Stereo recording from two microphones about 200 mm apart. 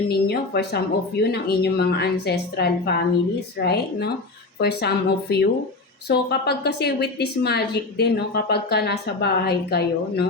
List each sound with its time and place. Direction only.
0.3 s a woman's voice: 55° left (ahead or behind)